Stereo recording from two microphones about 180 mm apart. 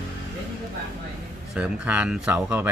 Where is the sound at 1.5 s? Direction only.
5° right (ahead or behind).